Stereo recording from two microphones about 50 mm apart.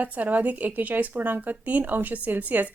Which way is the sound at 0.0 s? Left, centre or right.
Right.